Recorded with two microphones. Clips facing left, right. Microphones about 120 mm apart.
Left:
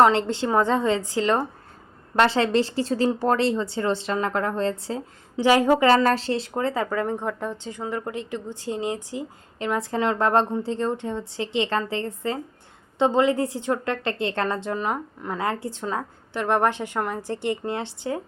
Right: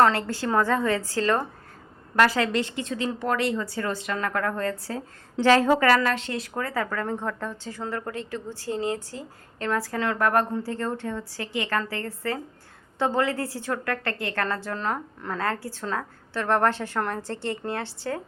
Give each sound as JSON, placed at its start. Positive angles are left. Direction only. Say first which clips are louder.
{"t": 0.0, "sound": "speech", "louder": "left 3 dB", "side_deg": 20}
{"t": 5.9, "sound": "a woman's voice", "louder": "left 3 dB", "side_deg": 35}